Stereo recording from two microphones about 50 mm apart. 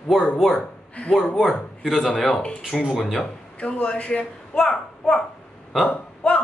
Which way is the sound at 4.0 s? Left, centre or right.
Left.